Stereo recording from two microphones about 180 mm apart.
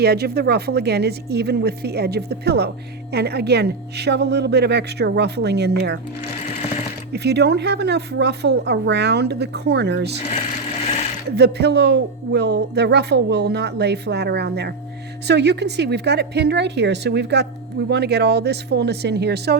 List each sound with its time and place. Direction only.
0.0 s a woman's voice: 60° right (ahead or behind)
7.1 s speech: 70° right (ahead or behind)
11.3 s speech: 65° right (ahead or behind)